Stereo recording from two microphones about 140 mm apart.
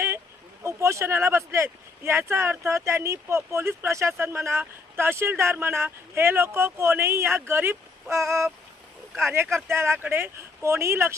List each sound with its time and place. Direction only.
0.6 s speech: 20° right (ahead or behind)